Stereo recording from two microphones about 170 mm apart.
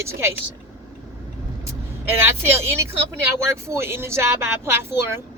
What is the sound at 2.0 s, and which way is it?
A woman's voice, 15° right (ahead or behind).